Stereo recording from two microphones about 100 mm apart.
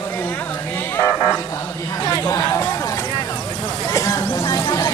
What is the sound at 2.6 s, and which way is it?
Vehicle, 30° left (ahead or behind).